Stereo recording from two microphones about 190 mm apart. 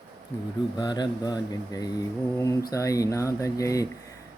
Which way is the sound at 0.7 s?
20° left (ahead or behind).